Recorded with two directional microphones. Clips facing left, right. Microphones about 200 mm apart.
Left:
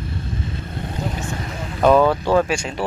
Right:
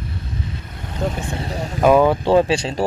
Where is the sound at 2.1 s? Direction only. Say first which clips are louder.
Right 3 dB; 25° right (ahead or behind).